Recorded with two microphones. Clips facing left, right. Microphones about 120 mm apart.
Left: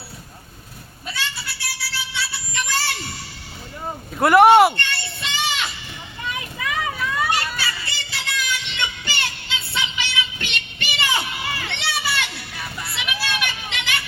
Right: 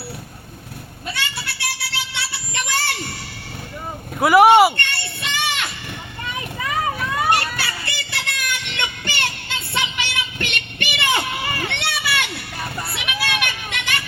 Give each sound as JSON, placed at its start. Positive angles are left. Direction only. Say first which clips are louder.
{"t": 1.1, "sound": "a sound", "louder": "even", "side_deg": -65}
{"t": 4.2, "sound": "speech", "louder": "even", "side_deg": -5}
{"t": 4.8, "sound": "child singing", "louder": "right 1 dB", "side_deg": -55}
{"t": 6.6, "sound": "vehicle", "louder": "right 3 dB", "side_deg": -40}
{"t": 7.3, "sound": "music", "louder": "right 4 dB", "side_deg": -60}